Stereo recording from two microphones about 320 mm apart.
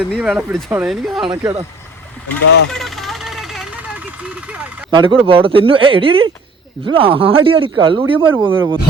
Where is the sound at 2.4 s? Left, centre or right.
Left.